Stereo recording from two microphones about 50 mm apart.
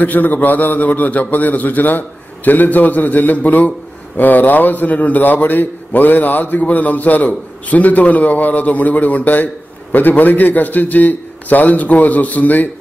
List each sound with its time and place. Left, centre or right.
0.0 s a man's voice: left